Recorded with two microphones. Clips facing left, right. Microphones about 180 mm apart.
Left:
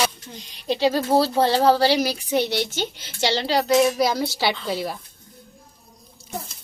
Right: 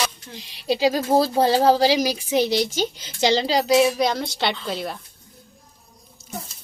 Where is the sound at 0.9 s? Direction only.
15° right (ahead or behind); by 4.9 s centre (ahead or behind).